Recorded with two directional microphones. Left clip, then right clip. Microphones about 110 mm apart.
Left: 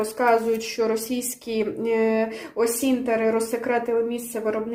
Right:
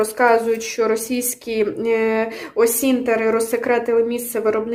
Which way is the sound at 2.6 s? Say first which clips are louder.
Right 6 dB; 30° right (ahead or behind).